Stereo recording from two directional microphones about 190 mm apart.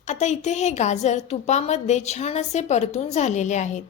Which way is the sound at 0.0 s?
40° left (ahead or behind).